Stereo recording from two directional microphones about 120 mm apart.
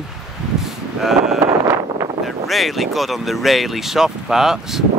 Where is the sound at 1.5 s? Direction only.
25° right (ahead or behind).